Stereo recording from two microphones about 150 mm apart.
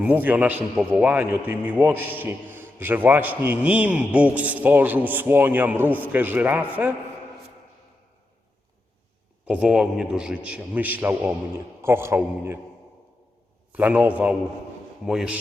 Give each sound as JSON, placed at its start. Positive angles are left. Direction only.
{"t": 0.0, "sound": "a man's voice", "side_deg": -10}
{"t": 9.5, "sound": "a man's voice", "side_deg": -5}
{"t": 13.7, "sound": "a man's voice", "side_deg": -10}